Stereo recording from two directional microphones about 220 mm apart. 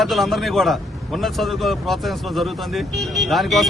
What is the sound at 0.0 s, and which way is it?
A man's voice, centre (ahead or behind).